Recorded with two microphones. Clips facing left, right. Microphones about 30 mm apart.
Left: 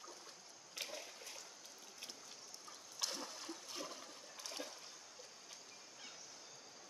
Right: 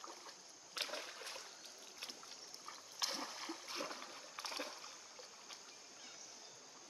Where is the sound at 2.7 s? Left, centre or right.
Right.